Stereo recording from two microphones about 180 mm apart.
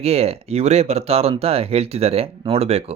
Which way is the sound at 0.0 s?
35° right (ahead or behind).